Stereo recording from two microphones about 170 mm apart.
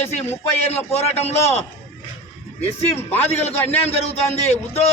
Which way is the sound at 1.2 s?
15° left (ahead or behind).